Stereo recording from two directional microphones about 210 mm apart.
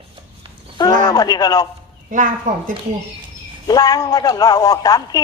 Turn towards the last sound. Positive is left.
turn(degrees=20)  # may be behind; listen again after turning